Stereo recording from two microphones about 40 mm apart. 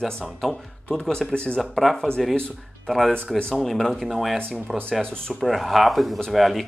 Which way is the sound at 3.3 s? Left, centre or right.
Left.